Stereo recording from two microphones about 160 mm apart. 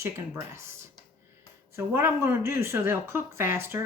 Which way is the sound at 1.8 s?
15° right (ahead or behind).